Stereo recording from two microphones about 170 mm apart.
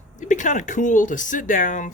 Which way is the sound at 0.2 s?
45° left (ahead or behind).